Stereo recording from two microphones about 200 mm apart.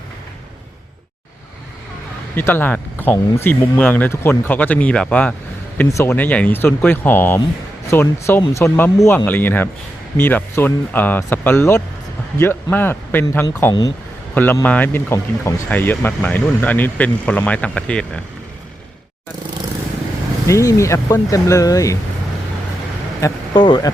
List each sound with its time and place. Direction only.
2.3 s speech: 10° left (ahead or behind)
20.5 s speech: 15° left (ahead or behind)
23.2 s speech: 25° left (ahead or behind)